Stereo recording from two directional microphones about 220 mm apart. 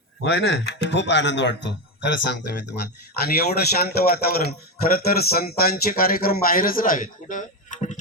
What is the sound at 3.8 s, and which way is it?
A man's voice, 45° left (ahead or behind).